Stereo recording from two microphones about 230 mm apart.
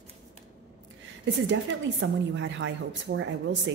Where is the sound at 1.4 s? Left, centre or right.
Right.